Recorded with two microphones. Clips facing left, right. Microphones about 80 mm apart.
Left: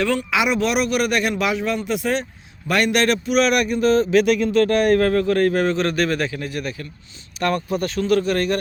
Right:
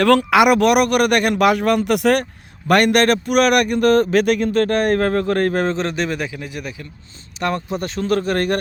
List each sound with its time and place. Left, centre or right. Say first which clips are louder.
0.0 s speech: right 7 dB; right
2.6 s a man's voice: right 4 dB; right
8.0 s a man's voice: right 1 dB; right